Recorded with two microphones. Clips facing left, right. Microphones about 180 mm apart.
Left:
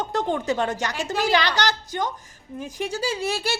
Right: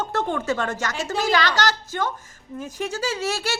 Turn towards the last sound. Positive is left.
turn(degrees=10)  # may be behind; listen again after turning